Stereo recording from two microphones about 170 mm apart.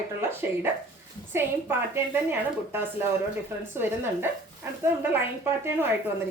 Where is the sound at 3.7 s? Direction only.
15° right (ahead or behind).